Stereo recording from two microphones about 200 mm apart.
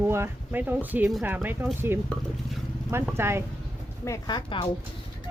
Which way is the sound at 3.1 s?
10° right (ahead or behind).